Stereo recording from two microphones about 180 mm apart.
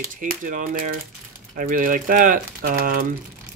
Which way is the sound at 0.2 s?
45° right (ahead or behind).